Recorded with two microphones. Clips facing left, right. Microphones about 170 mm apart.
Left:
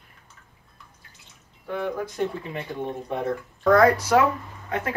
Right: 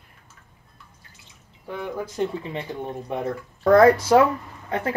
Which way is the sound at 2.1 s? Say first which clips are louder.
Right 1 dB; 25° right (ahead or behind).